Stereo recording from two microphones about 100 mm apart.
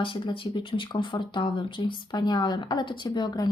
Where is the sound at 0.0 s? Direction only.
60° left (ahead or behind).